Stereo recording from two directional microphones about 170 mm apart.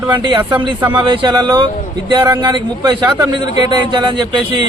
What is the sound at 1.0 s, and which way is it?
Speech, 30° right (ahead or behind).